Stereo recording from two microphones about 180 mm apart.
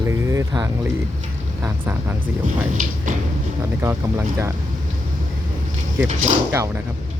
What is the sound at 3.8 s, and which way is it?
Speech, 15° right (ahead or behind).